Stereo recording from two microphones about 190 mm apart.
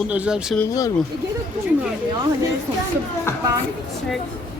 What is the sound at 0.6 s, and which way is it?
Speech, 15° left (ahead or behind).